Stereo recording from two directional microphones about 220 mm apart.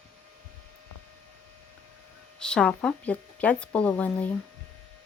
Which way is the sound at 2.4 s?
5° left (ahead or behind).